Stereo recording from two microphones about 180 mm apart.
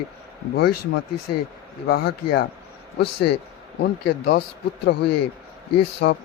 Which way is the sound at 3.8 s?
65° left (ahead or behind).